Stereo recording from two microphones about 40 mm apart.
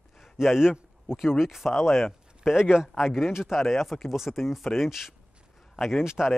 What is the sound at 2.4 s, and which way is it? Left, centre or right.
Speech, centre.